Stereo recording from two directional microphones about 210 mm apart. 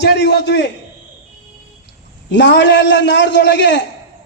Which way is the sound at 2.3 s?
55° left (ahead or behind).